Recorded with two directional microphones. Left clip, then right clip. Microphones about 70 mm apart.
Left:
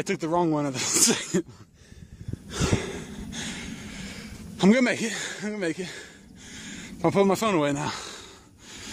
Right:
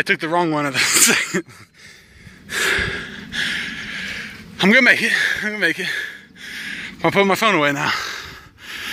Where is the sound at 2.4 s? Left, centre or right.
Left.